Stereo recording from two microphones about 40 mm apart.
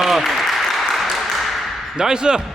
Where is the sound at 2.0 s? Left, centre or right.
Centre.